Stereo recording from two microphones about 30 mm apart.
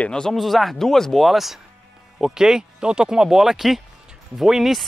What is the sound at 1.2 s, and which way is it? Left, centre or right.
Speech, centre.